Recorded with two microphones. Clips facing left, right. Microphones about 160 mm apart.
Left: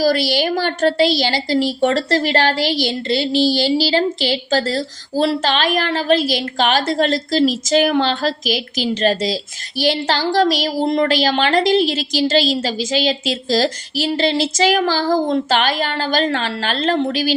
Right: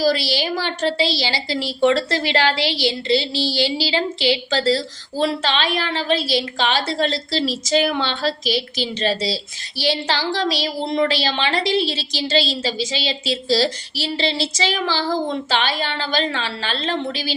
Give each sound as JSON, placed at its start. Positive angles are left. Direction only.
{"t": 0.0, "sound": "a woman's voice", "side_deg": 50}